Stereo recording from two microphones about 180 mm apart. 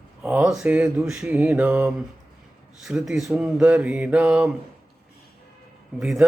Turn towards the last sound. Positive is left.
turn(degrees=-5)  # may be behind; listen again after turning